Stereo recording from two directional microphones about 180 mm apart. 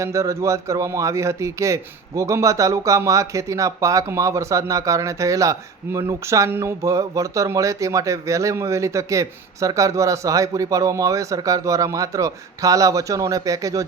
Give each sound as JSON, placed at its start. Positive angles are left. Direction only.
{"t": 0.0, "sound": "a man's voice", "side_deg": -15}